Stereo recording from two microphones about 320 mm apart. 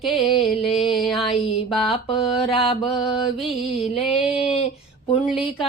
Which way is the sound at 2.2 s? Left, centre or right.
Centre.